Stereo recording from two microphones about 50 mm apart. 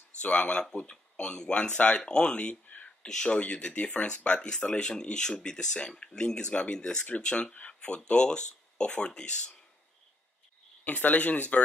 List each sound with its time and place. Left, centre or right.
0.2 s speech: left
1.7 s speech: left
2.0 s speech: centre
10.8 s speech: left